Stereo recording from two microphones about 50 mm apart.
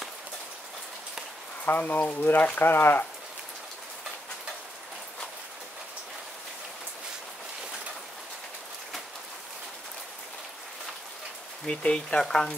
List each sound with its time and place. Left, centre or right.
1.7 s speech: left
11.6 s speech: centre